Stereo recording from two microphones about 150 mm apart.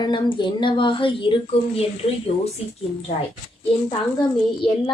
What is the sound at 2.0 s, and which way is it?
Speech, 45° left (ahead or behind).